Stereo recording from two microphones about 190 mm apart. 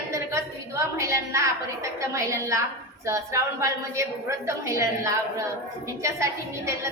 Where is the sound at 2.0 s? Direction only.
15° right (ahead or behind).